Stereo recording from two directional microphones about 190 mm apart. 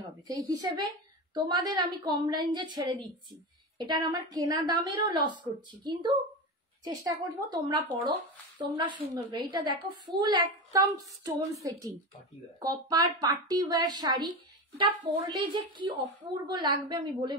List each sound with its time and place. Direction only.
0.3 s a woman's voice: 20° right (ahead or behind)